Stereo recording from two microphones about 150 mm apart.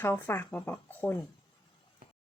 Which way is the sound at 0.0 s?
15° left (ahead or behind).